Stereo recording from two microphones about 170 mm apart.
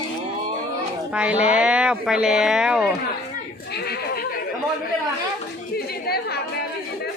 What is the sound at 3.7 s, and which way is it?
Neigh, 65° left (ahead or behind).